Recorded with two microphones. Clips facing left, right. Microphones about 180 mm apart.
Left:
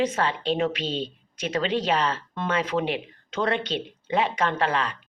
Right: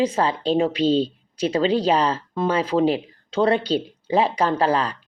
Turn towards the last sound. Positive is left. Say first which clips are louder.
# right 5 dB
turn(degrees=-35)  # may be behind; listen again after turning